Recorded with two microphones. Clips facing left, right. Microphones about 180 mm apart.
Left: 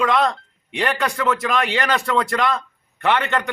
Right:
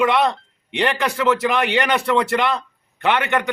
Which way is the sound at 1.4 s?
20° right (ahead or behind).